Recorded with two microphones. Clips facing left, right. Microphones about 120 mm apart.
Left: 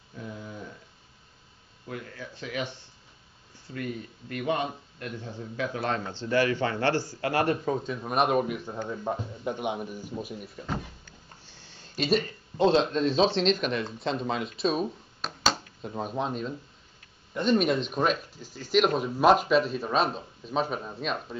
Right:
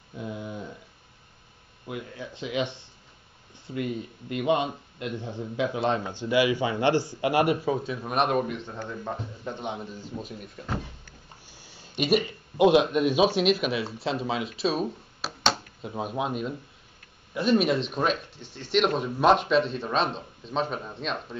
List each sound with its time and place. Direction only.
0.2 s dog: 15° right (ahead or behind)
1.9 s speech: 20° right (ahead or behind)
3.7 s a man's voice: 20° right (ahead or behind); by 10.6 s 5° left (ahead or behind)
11.4 s a sound: 10° right (ahead or behind)
12.0 s speech: 10° right (ahead or behind)